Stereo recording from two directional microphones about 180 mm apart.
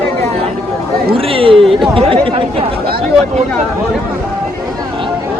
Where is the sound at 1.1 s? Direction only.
30° right (ahead or behind).